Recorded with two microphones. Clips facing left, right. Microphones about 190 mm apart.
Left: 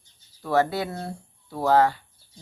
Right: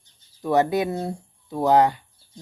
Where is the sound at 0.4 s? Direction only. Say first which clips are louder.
Right 3 dB; 20° right (ahead or behind).